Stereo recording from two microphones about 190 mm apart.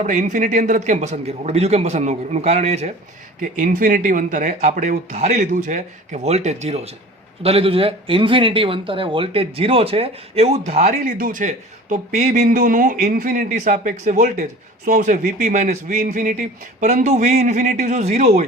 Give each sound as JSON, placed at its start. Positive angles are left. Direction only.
{"t": 0.0, "sound": "speech", "side_deg": -40}